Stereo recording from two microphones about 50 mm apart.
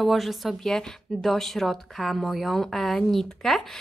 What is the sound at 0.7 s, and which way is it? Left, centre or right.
A woman's voice, centre.